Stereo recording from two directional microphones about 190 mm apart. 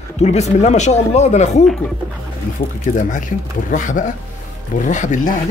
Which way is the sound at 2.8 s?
45° left (ahead or behind).